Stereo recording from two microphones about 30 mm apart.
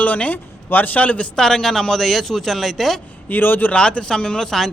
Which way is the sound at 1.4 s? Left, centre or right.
Left.